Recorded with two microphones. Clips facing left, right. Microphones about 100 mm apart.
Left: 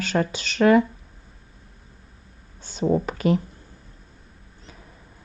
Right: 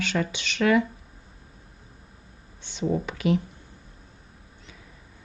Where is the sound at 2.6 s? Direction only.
40° left (ahead or behind).